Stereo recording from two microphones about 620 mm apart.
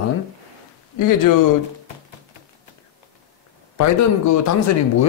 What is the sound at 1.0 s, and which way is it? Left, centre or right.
Speech, left.